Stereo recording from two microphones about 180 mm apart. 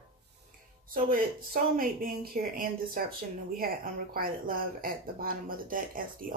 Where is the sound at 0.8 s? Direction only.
50° right (ahead or behind).